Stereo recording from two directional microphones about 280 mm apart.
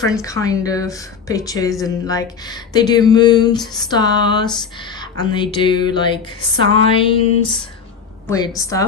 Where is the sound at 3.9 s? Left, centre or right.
Centre.